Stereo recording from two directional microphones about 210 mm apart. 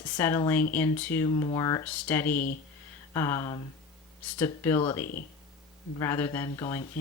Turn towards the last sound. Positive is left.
turn(degrees=15)  # may be behind; listen again after turning